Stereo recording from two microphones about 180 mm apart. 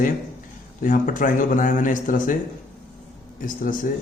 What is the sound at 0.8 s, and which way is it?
Speech, 45° left (ahead or behind).